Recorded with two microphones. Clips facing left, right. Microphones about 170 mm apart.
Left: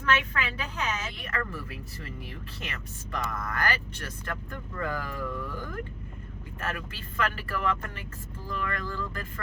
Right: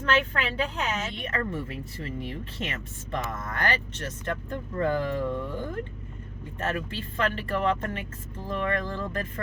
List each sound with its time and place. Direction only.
0.0 s speech: 30° right (ahead or behind)